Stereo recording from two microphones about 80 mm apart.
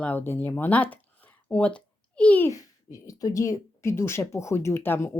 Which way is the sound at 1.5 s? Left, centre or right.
Centre.